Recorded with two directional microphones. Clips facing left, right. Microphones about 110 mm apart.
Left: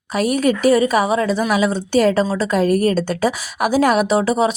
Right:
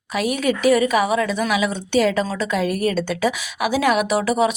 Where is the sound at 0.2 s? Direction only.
40° left (ahead or behind).